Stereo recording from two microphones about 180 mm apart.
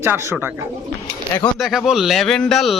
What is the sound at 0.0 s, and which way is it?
Speech, 10° right (ahead or behind).